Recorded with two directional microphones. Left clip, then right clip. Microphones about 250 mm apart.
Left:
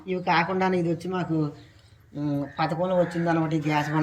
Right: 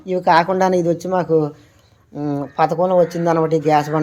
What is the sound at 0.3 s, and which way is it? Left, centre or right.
Speech, centre.